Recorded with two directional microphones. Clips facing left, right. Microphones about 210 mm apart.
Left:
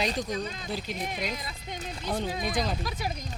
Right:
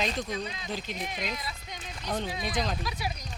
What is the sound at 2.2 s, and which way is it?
Speech, 50° left (ahead or behind).